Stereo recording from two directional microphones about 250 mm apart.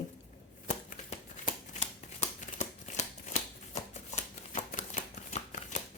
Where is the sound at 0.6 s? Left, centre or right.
Left.